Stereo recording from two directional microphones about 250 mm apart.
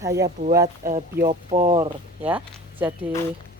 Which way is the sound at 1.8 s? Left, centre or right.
Centre.